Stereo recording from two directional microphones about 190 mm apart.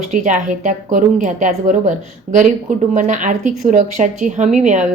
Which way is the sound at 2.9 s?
40° right (ahead or behind).